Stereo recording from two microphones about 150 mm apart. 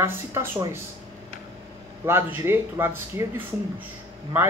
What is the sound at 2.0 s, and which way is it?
Speech, 15° right (ahead or behind).